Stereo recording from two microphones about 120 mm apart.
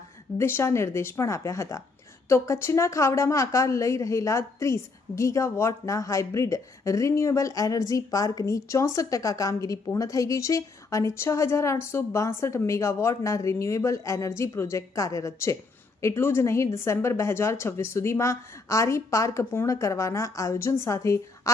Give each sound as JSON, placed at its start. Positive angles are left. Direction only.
{"t": 0.3, "sound": "a woman's voice", "side_deg": 20}